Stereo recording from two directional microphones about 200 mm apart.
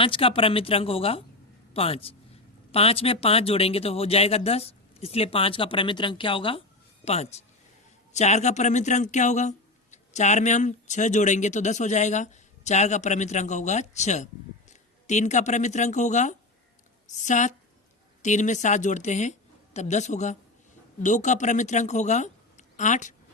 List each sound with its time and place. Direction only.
0.0 s a woman's voice: 25° left (ahead or behind)